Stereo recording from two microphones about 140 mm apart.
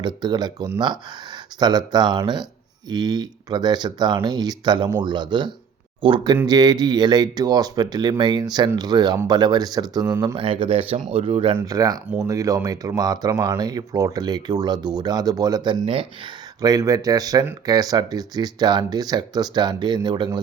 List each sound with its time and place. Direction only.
0.0 s speech: 30° right (ahead or behind)
10.3 s speech: 40° right (ahead or behind)
11.5 s speech: 25° right (ahead or behind)
16.6 s speech: 25° right (ahead or behind)